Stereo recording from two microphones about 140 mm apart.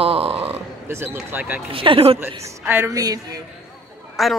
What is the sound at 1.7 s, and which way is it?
Speech, 40° right (ahead or behind).